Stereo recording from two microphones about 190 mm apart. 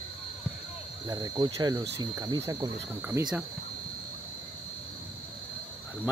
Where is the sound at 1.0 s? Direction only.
20° right (ahead or behind).